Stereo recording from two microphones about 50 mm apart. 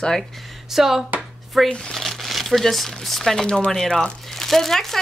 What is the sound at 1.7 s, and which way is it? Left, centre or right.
Speech, centre.